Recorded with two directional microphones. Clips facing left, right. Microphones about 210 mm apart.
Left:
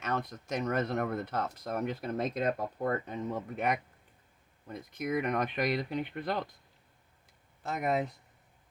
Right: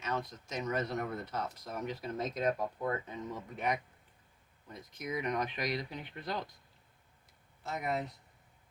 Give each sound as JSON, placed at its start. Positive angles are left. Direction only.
{"t": 0.0, "sound": "speech", "side_deg": 55}
{"t": 7.8, "sound": "speech", "side_deg": 50}